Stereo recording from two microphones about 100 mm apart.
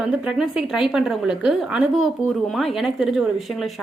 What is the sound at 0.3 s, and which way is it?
A woman's voice, 5° right (ahead or behind).